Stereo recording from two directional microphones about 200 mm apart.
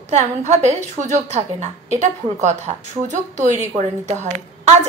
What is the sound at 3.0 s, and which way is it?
Speech, 35° right (ahead or behind).